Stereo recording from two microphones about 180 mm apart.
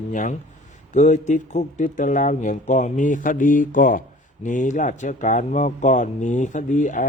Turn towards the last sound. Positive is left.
turn(degrees=45)  # may be behind; listen again after turning